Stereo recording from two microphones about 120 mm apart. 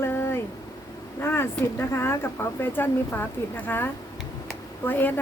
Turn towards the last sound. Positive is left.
turn(degrees=15)  # may be behind; listen again after turning